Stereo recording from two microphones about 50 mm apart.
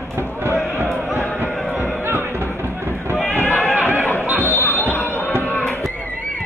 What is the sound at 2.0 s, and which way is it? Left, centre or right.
Run, right.